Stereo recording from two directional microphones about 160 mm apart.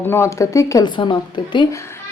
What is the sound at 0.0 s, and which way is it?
Speech, 15° left (ahead or behind).